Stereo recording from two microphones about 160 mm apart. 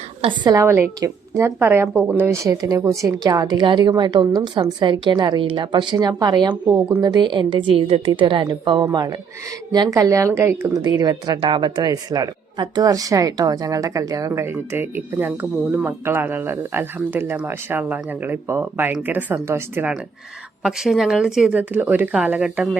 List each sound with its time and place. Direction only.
0.2 s a woman's voice: 30° right (ahead or behind)
0.5 s speech: 15° right (ahead or behind)
20.6 s speech: 5° right (ahead or behind)